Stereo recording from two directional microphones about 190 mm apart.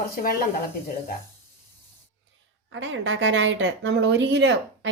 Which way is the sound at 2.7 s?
75° right (ahead or behind).